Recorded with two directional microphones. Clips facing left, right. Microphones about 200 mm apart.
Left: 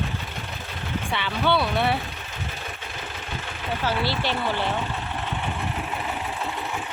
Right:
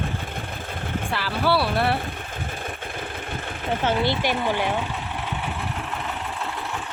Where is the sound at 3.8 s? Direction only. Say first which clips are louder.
Right 3 dB; 20° right (ahead or behind).